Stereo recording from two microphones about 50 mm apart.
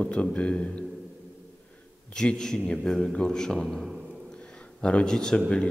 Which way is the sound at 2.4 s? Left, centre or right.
Centre.